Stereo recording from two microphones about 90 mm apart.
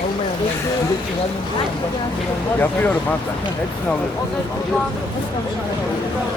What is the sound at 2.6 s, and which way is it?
Speech, 20° left (ahead or behind).